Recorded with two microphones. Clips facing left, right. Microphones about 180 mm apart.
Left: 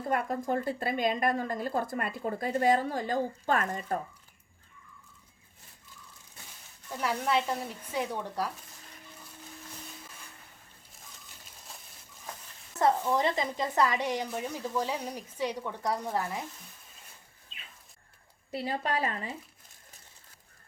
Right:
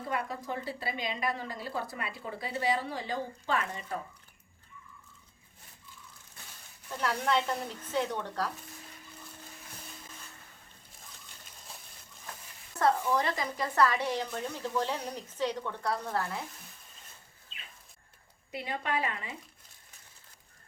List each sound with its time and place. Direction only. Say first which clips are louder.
0.1 s a woman's voice: left 6 dB; 50° left (ahead or behind)
7.0 s a woman's voice: left 1 dB; 10° left (ahead or behind)
12.8 s a woman's voice: left 2 dB; 20° left (ahead or behind)
18.5 s a woman's voice: left 2 dB; 35° left (ahead or behind)